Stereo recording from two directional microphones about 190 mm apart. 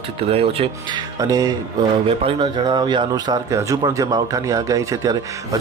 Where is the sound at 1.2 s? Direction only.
20° right (ahead or behind).